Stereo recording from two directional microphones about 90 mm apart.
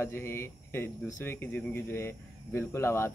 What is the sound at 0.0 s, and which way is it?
Speech, 25° left (ahead or behind).